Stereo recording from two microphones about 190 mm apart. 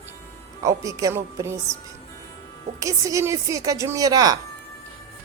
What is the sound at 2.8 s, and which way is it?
Speech, 15° right (ahead or behind).